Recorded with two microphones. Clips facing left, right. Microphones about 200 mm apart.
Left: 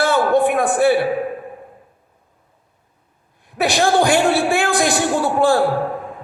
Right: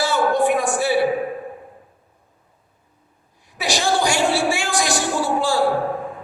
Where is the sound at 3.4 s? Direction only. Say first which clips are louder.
Left 5 dB; 55° left (ahead or behind).